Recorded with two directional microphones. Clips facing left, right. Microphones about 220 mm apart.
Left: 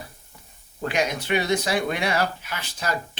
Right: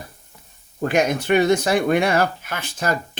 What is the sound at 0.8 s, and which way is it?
Speech, 50° right (ahead or behind).